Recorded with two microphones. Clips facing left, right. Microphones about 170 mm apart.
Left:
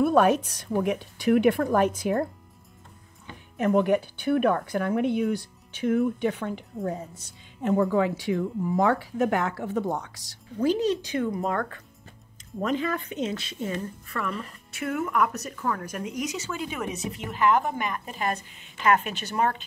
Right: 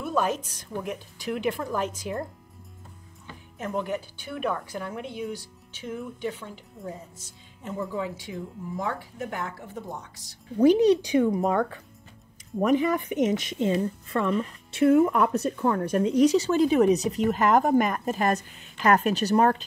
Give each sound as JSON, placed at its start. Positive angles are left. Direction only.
{"t": 0.0, "sound": "speech", "side_deg": 60}
{"t": 3.5, "sound": "speech", "side_deg": 70}
{"t": 10.6, "sound": "speech", "side_deg": -15}